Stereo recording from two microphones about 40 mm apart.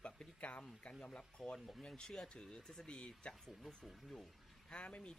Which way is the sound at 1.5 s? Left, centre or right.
Centre.